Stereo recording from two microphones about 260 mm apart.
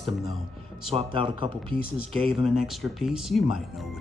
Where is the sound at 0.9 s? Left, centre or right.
Centre.